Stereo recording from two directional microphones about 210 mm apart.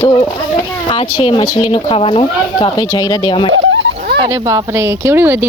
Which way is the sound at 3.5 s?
65° right (ahead or behind).